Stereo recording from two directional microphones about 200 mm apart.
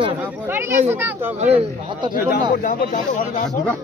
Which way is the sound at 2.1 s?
45° left (ahead or behind).